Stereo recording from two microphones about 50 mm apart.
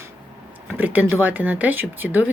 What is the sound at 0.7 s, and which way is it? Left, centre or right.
A woman's voice, right.